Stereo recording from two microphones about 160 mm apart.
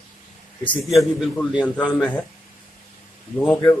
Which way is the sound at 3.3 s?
10° left (ahead or behind).